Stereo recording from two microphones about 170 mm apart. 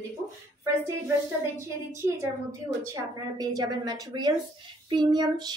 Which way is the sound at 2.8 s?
20° right (ahead or behind).